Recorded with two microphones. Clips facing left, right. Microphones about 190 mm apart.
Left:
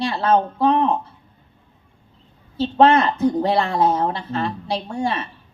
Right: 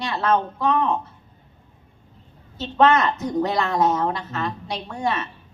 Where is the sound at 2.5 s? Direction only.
30° left (ahead or behind).